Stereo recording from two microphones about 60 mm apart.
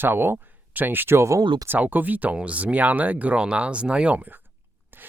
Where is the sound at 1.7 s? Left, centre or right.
Right.